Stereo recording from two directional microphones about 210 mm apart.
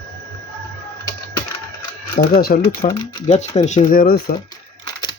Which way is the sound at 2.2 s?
45° left (ahead or behind).